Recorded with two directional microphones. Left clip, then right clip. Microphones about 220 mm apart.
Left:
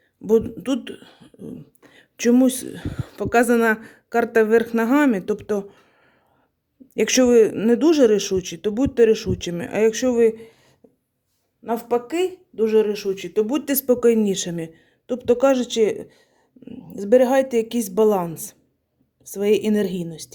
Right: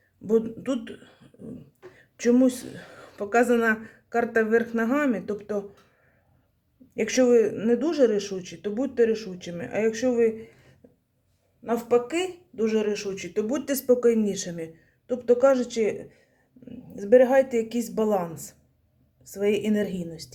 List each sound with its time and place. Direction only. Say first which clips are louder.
0.3 s speech: left 5 dB; 40° left (ahead or behind)
6.9 s speech: left 5 dB; 45° left (ahead or behind)
10.8 s a sound: left 3 dB; 45° left (ahead or behind)
11.6 s speech: left 1 dB; 35° left (ahead or behind)